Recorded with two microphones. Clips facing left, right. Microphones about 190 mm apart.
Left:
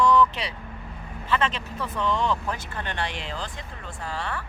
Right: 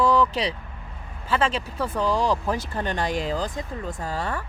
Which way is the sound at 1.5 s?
30° right (ahead or behind).